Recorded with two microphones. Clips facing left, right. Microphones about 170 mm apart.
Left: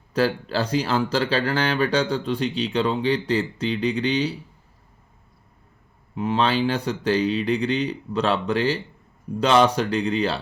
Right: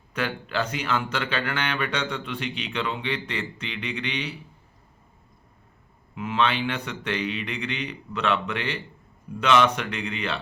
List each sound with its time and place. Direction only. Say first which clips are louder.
0.1 s speech: left 7 dB; 35° left (ahead or behind)
6.1 s speech: left 4 dB; 35° left (ahead or behind)